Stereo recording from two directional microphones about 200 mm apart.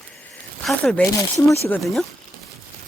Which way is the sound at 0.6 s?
Centre (ahead or behind).